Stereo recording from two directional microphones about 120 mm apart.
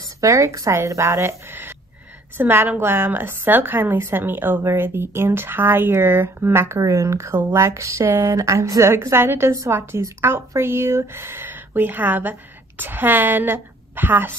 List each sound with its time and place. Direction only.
0.2 s a woman's voice: 25° right (ahead or behind)